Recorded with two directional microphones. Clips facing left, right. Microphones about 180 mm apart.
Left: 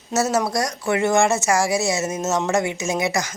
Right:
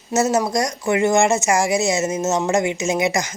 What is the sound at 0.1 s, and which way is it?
A woman's voice, 15° right (ahead or behind).